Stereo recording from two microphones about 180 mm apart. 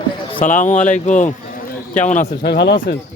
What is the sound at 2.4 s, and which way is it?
Speech, 70° left (ahead or behind).